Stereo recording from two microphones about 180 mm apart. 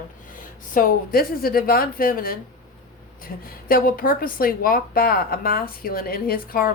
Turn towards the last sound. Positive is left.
turn(degrees=50)  # may be behind; listen again after turning